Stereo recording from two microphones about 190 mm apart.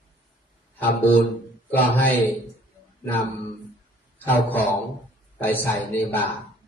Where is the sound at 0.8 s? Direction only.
10° left (ahead or behind).